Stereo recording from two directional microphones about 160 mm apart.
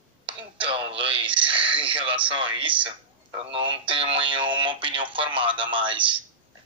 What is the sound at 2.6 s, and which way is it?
Speech, 30° right (ahead or behind).